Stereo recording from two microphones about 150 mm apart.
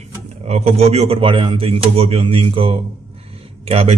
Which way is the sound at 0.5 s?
45° right (ahead or behind).